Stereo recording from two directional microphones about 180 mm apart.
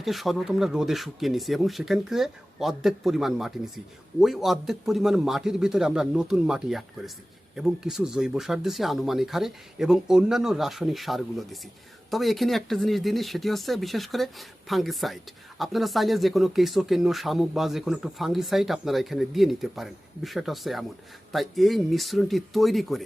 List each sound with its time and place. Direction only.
0.0 s speech: centre (ahead or behind)